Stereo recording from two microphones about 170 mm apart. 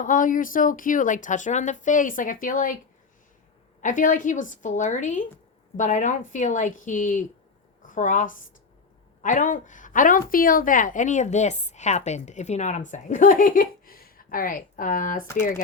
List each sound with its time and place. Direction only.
0.0 s a woman's voice: 50° left (ahead or behind)
3.8 s a woman's voice: 50° left (ahead or behind)